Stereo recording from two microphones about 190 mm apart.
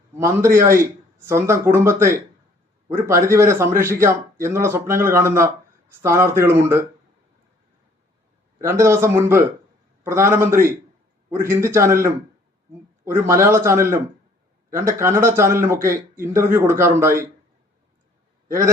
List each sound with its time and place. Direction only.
0.2 s speech: 15° right (ahead or behind)
8.6 s speech: 15° right (ahead or behind)
13.1 s speech: 15° right (ahead or behind)
18.4 s a man's voice: 15° right (ahead or behind)